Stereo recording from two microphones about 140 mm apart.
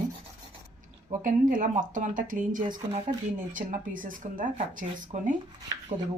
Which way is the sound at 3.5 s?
70° right (ahead or behind).